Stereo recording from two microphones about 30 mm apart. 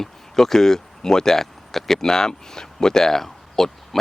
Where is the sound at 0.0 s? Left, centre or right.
Centre.